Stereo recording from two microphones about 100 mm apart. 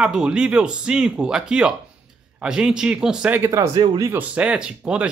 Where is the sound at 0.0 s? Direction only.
5° right (ahead or behind).